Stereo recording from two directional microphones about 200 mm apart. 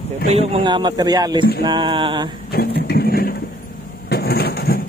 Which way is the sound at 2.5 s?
50° left (ahead or behind).